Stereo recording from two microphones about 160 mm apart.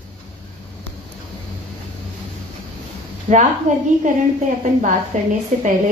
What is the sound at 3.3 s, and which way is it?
Speech, 50° right (ahead or behind).